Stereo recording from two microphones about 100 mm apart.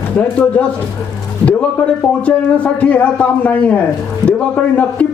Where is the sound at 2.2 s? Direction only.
15° left (ahead or behind).